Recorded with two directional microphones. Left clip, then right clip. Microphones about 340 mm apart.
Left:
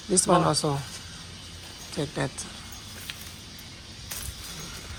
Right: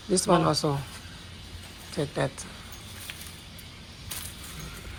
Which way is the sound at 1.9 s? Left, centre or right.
Centre.